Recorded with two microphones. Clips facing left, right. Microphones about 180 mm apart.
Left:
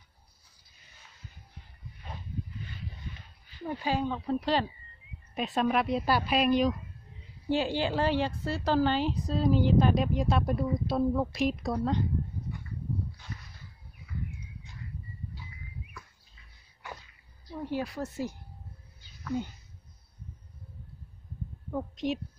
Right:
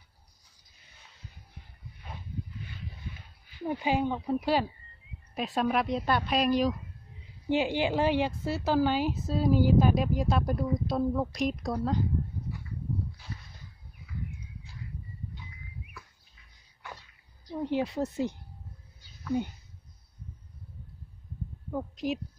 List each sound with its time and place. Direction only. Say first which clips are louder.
3.2 s a woman's voice: right 3 dB; 10° right (ahead or behind)
7.4 s a woman's voice: right 1 dB; 15° right (ahead or behind)
17.5 s a woman's voice: right 4 dB; 20° right (ahead or behind)
21.7 s a woman's voice: even; centre (ahead or behind)